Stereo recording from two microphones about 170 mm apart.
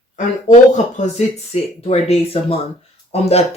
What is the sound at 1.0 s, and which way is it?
Speech, 40° left (ahead or behind).